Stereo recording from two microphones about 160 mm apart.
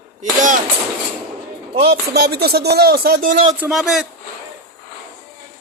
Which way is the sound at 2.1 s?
80° right.